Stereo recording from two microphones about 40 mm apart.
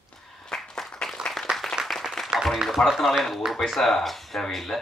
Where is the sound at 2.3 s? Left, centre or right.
Centre.